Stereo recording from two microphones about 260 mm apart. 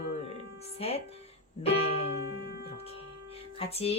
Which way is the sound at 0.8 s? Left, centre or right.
Left.